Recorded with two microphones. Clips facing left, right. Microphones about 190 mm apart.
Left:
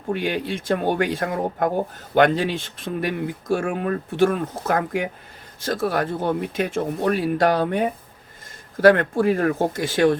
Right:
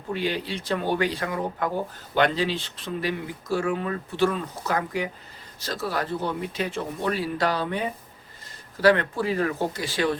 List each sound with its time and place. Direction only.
0.1 s speech: 55° left (ahead or behind)